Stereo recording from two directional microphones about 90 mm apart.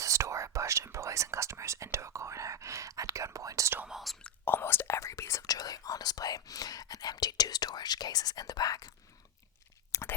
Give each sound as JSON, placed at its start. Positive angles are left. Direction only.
{"t": 0.0, "sound": "whispering", "side_deg": -35}
{"t": 3.8, "sound": "whispering", "side_deg": 0}
{"t": 4.2, "sound": "whispering", "side_deg": 25}
{"t": 9.9, "sound": "a sound", "side_deg": 30}